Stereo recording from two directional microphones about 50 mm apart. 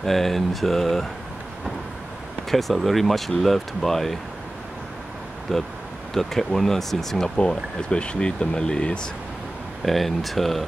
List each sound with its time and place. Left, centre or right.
0.0 s speech: centre
2.5 s speech: centre
5.5 s speech: centre
7.3 s speech: centre
9.8 s speech: centre